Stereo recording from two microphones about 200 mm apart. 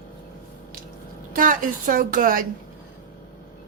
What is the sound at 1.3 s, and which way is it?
A woman's voice, 40° right (ahead or behind).